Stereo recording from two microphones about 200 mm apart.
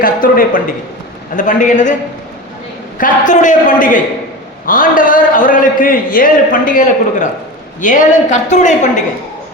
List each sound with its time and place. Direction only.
0.0 s a man's voice: 45° left (ahead or behind)
3.0 s a woman's voice: 40° left (ahead or behind)